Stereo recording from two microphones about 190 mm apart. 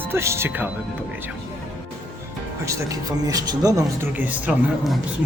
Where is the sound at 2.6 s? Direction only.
15° right (ahead or behind).